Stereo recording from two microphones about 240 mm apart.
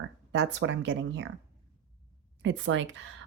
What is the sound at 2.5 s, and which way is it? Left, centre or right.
Speech, right.